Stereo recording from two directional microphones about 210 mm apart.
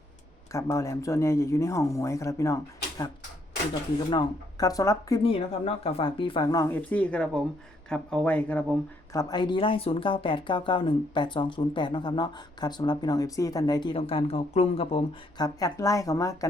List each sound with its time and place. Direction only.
0.5 s speech: 15° left (ahead or behind)
4.1 s speech: 20° left (ahead or behind)
9.1 s speech: 20° left (ahead or behind)
15.4 s speech: 15° left (ahead or behind)